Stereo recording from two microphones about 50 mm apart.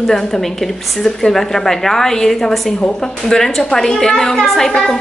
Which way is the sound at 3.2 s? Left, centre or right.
Centre.